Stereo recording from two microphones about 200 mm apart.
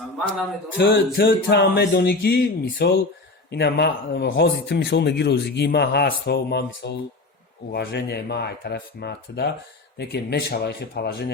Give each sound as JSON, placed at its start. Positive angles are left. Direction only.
{"t": 0.8, "sound": "speech", "side_deg": 60}